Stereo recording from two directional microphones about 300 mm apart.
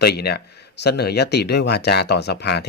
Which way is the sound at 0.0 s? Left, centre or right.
Left.